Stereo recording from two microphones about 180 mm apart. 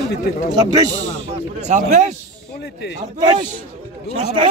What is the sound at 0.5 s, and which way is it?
Speech, 20° right (ahead or behind).